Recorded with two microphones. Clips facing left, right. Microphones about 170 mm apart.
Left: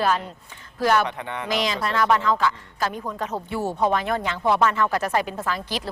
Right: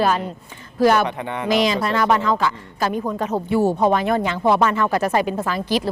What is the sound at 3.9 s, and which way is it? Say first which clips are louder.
Speech: right 5 dB; 10° right (ahead or behind).